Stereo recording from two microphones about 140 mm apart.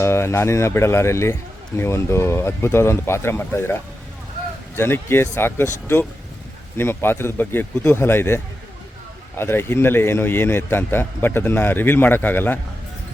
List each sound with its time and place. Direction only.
0.0 s a man's voice: 20° left (ahead or behind)
6.7 s a man's voice: 15° left (ahead or behind)